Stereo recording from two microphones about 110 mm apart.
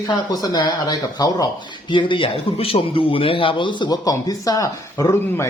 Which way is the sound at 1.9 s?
45° left (ahead or behind).